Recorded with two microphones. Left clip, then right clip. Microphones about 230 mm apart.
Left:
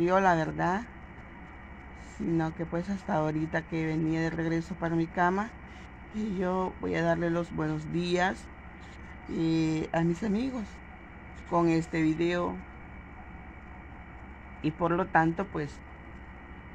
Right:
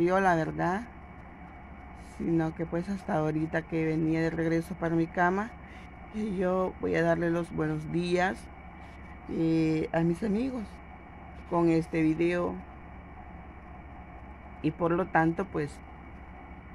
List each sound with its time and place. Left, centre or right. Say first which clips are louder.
0.0 s speech: left 1 dB; centre
2.2 s speech: right 1 dB; centre
14.6 s speech: even; centre